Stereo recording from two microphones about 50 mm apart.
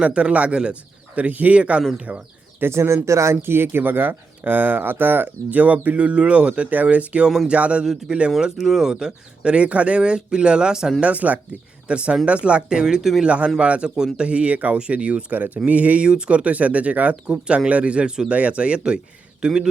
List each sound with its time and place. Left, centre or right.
0.0 s speech: right
2.6 s speech: right
3.4 s speech: right
7.9 s speech: centre
11.0 s speech: right; by 13.2 s centre
13.2 s speech: right
14.3 s speech: right